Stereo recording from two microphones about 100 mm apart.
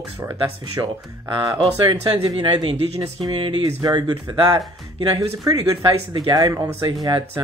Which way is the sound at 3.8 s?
40° right (ahead or behind).